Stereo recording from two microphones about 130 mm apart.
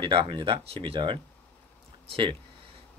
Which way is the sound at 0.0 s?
40° right (ahead or behind).